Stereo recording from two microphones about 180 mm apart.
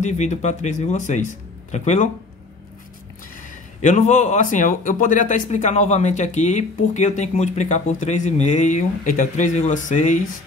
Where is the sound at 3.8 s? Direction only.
40° left (ahead or behind).